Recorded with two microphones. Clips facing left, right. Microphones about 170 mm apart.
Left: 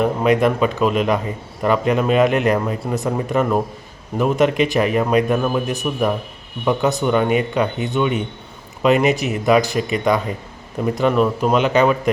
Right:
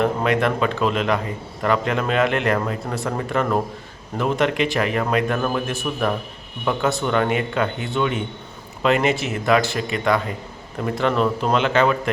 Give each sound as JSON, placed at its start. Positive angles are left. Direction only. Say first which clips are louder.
{"t": 0.0, "sound": "a man's voice", "louder": "left 4 dB", "side_deg": 15}